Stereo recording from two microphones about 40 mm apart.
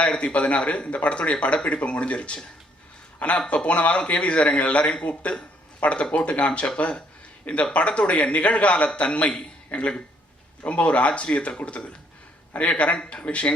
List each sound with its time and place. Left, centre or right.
0.2 s speech: left